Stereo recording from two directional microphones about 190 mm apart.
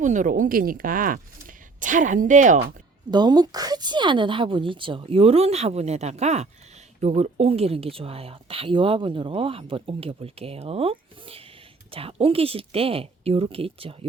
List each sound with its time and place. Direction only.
0.0 s speech: 40° right (ahead or behind)
3.1 s speech: 20° right (ahead or behind)